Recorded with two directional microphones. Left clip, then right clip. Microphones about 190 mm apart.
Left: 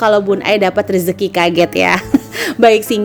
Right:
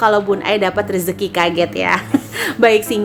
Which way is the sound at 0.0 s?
30° left (ahead or behind).